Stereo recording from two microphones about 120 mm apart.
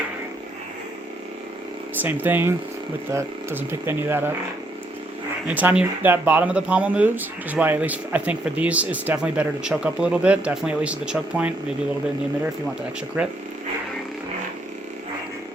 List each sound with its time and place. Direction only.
2.0 s speech: 15° right (ahead or behind)
5.5 s speech: 10° right (ahead or behind)
13.2 s speech: 10° right (ahead or behind)